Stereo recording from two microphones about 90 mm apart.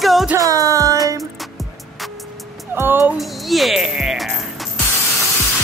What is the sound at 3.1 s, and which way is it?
Speech, centre (ahead or behind).